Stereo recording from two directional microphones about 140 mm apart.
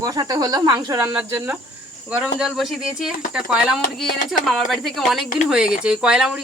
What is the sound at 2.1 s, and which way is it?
Speech, 5° right (ahead or behind).